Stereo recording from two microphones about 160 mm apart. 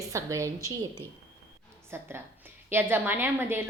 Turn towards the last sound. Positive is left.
turn(degrees=-15)  # may be behind; listen again after turning